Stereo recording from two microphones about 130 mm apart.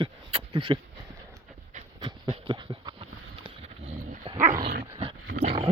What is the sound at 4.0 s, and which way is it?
Dog, 90° right.